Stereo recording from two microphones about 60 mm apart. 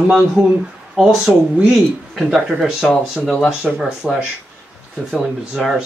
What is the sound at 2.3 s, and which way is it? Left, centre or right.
Speech, centre.